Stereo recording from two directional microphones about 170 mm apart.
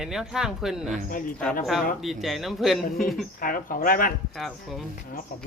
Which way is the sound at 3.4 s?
55° left (ahead or behind).